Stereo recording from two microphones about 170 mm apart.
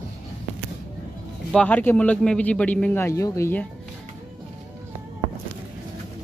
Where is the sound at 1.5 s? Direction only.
10° left (ahead or behind).